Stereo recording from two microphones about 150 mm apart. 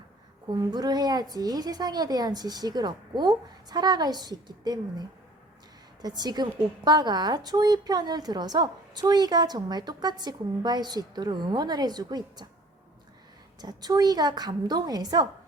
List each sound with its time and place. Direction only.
0.5 s a woman's voice: 25° right (ahead or behind)
13.6 s a woman's voice: 25° right (ahead or behind)